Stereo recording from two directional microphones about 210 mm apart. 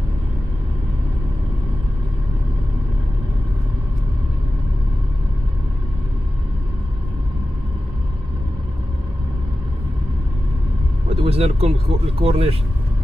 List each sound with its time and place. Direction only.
11.1 s speech: 30° right (ahead or behind)